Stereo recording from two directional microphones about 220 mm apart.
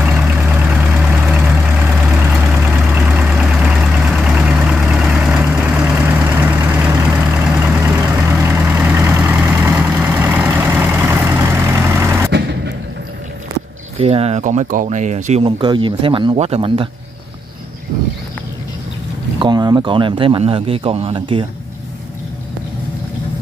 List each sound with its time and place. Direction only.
0.0 s vehicle: 5° right (ahead or behind)
12.3 s vehicle: 50° right (ahead or behind)
13.9 s speech: 25° right (ahead or behind)
19.4 s speech: 20° right (ahead or behind)